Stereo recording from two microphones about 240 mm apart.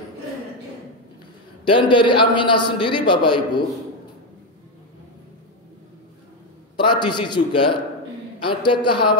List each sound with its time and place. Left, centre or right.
1.6 s a man's voice: centre
6.8 s a man's voice: centre